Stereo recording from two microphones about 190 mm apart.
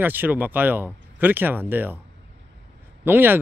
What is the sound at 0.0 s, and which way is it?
Speech, 10° right (ahead or behind).